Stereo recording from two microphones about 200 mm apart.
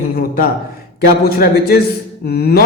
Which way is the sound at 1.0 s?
50° left (ahead or behind).